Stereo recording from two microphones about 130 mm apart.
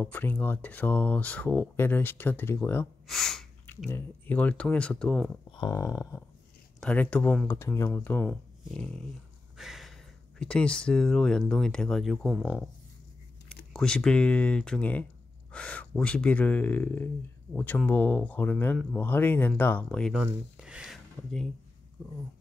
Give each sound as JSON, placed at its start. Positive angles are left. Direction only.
{"t": 0.0, "sound": "speech", "side_deg": 15}
{"t": 3.1, "sound": "speech", "side_deg": 5}
{"t": 5.5, "sound": "a sound", "side_deg": 35}
{"t": 6.8, "sound": "speech", "side_deg": 10}
{"t": 7.4, "sound": "speech", "side_deg": 20}
{"t": 9.6, "sound": "a sound", "side_deg": 0}
{"t": 10.4, "sound": "speech", "side_deg": 5}
{"t": 13.5, "sound": "speech", "side_deg": 5}
{"t": 20.2, "sound": "speech", "side_deg": -5}